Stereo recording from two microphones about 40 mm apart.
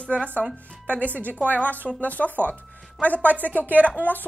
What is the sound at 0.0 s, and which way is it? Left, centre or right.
Speech, left.